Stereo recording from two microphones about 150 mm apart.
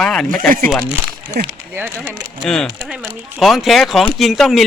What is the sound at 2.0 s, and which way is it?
A man's voice, centre (ahead or behind).